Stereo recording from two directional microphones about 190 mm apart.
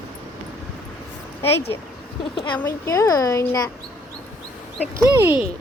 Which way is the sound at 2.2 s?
25° left (ahead or behind).